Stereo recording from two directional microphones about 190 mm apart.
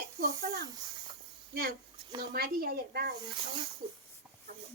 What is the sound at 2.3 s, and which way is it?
Speech, 55° right (ahead or behind).